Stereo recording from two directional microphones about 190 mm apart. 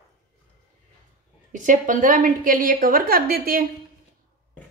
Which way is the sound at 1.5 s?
45° right (ahead or behind).